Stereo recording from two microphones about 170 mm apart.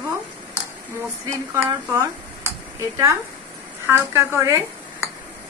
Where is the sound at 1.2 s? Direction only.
10° right (ahead or behind).